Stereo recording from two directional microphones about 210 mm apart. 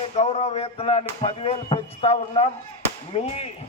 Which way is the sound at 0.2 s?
30° left (ahead or behind).